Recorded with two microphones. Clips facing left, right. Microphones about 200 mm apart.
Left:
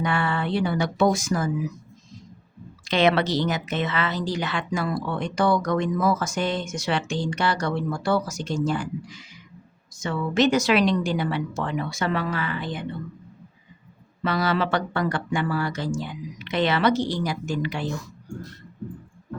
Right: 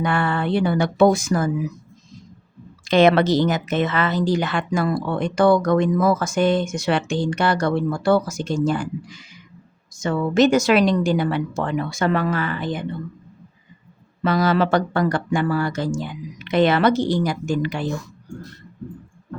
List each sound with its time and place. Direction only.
0.0 s a sound: 50° right (ahead or behind)
2.8 s a woman's voice: 45° right (ahead or behind)
10.0 s a woman's voice: 45° right (ahead or behind)
14.3 s a woman's voice: 45° right (ahead or behind)